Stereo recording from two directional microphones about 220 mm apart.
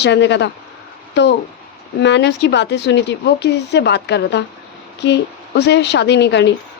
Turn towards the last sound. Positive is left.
turn(degrees=55)  # may be behind; listen again after turning